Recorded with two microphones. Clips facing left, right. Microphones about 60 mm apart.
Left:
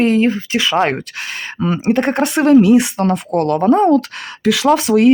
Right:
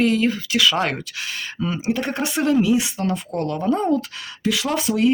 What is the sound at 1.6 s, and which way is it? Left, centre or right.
Speech, left.